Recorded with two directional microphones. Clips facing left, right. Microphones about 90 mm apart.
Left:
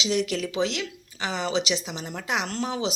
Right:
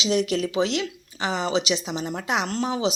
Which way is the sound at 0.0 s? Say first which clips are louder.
Right 3 dB; 20° right (ahead or behind).